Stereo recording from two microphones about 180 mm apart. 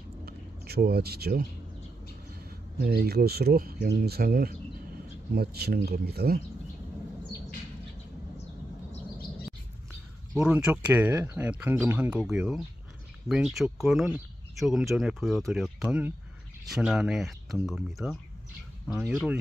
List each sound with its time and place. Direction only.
0.2 s a sound: 60° right (ahead or behind)
2.8 s speech: 60° right (ahead or behind)
10.3 s speech: 5° right (ahead or behind)